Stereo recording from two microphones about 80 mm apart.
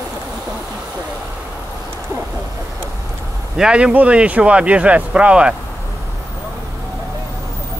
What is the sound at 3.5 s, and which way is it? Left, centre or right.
Speech, centre.